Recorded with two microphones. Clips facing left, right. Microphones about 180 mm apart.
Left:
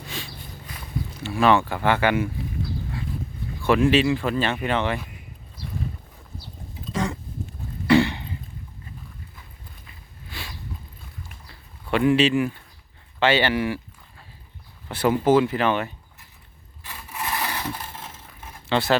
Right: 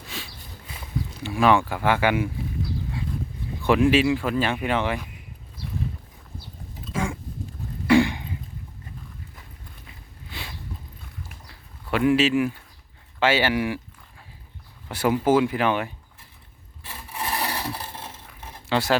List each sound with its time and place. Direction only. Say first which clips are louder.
1.2 s speech: even; 10° right (ahead or behind)
3.6 s speech: even; 15° right (ahead or behind)
6.8 s a sound: left 1 dB; 10° right (ahead or behind)
10.2 s a sound: even; 20° right (ahead or behind)
11.9 s speech: left 1 dB; 5° right (ahead or behind)
14.8 s speech: left 1 dB; 10° right (ahead or behind)
16.8 s rub: even; 30° right (ahead or behind)
17.7 s vehicle: right 1 dB; 30° right (ahead or behind)
18.3 s a sound: left 1 dB; 10° right (ahead or behind)